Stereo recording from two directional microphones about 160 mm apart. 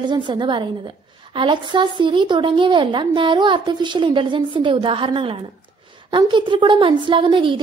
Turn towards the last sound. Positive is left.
turn(degrees=-30)  # may be behind; listen again after turning